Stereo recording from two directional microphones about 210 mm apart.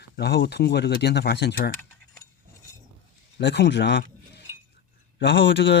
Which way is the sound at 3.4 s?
55° left (ahead or behind).